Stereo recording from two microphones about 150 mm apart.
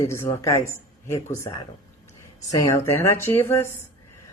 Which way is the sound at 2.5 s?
20° left (ahead or behind).